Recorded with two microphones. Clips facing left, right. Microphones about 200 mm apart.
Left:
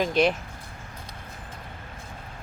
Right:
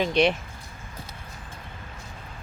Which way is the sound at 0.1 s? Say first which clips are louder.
Right 1 dB; centre (ahead or behind).